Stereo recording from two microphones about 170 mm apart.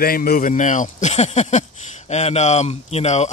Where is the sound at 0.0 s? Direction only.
60° left (ahead or behind).